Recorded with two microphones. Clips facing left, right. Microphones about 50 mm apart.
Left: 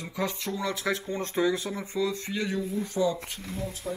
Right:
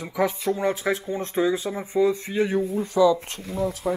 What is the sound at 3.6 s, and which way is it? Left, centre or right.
Speech, right.